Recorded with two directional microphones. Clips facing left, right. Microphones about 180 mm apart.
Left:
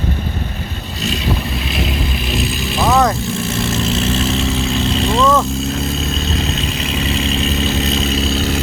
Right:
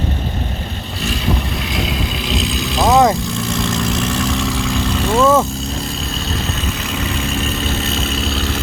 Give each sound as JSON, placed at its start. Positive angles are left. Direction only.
{"t": 2.3, "sound": "vehicle", "side_deg": -15}
{"t": 4.4, "sound": "vehicle", "side_deg": -70}
{"t": 5.1, "sound": "vehicle", "side_deg": -15}
{"t": 6.9, "sound": "vehicle", "side_deg": 75}
{"t": 7.3, "sound": "vehicle", "side_deg": -45}
{"t": 8.3, "sound": "vehicle", "side_deg": 40}